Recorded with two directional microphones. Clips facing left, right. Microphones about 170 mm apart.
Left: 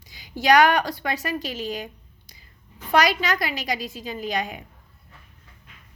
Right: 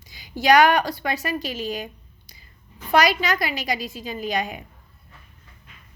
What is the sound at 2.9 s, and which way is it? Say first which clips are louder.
A woman's voice: right 1 dB; 10° right (ahead or behind).